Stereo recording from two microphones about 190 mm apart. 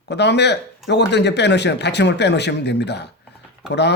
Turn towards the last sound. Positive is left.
turn(degrees=65)  # may be behind; listen again after turning